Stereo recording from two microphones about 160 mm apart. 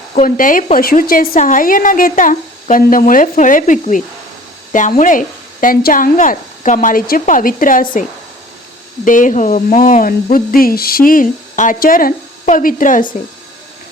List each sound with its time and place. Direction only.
0.1 s speech: 55° left (ahead or behind)
9.0 s speech: 55° left (ahead or behind)